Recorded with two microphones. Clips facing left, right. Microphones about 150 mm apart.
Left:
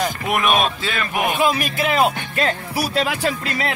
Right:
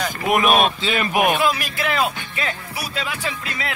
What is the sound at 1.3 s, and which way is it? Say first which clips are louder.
Speech: left 1 dB; 20° left (ahead or behind).